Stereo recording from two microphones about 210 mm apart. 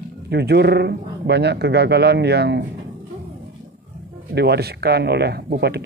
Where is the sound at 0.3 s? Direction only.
50° right (ahead or behind).